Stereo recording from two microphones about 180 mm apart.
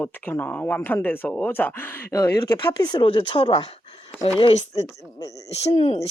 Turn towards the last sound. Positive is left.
turn(degrees=30)  # may be behind; listen again after turning